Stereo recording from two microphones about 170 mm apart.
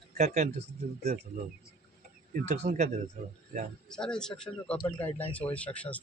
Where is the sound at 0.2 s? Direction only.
40° right (ahead or behind).